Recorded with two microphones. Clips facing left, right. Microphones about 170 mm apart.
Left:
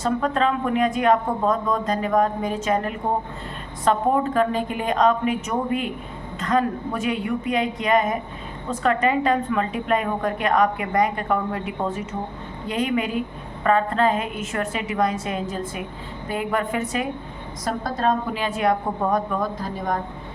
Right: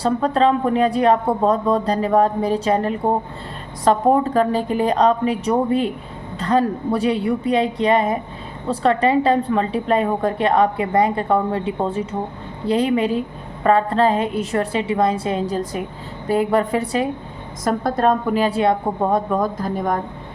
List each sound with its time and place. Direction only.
0.0 s a woman's voice: 35° right (ahead or behind)
17.7 s a woman's voice: 50° right (ahead or behind)
18.4 s a woman's voice: 30° right (ahead or behind)